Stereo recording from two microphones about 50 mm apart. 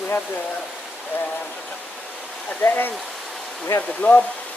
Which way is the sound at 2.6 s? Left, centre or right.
Left.